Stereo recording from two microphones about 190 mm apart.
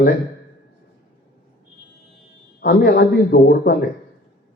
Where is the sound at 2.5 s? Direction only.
60° left (ahead or behind).